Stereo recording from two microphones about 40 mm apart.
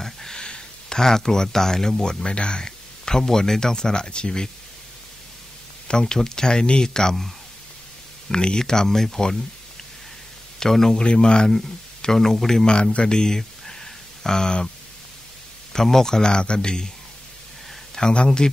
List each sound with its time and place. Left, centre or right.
0.0 s a sound: centre
0.4 s speech: centre
2.2 s speech: left
5.9 s speech: centre
8.3 s speech: centre
10.6 s speech: centre
11.1 s speech: left
11.4 s speech: centre
15.7 s speech: centre
17.9 s speech: left